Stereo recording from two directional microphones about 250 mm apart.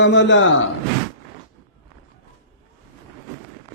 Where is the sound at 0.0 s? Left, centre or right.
Left.